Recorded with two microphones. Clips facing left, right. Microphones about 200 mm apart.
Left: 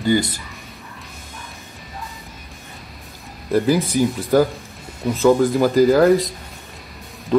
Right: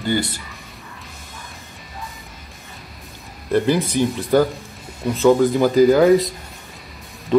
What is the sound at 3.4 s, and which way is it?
Speech, centre (ahead or behind).